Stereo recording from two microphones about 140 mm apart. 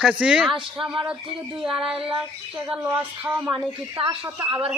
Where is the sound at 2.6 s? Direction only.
15° right (ahead or behind).